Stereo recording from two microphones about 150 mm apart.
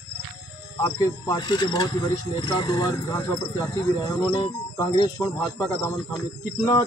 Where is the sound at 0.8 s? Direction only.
25° left (ahead or behind).